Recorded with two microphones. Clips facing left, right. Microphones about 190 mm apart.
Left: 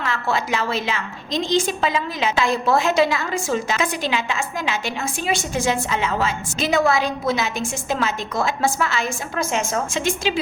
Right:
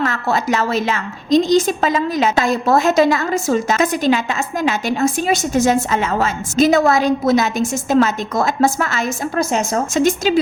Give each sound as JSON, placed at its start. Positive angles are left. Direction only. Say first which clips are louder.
{"t": 0.0, "sound": "a woman's voice", "louder": "right 5 dB", "side_deg": -40}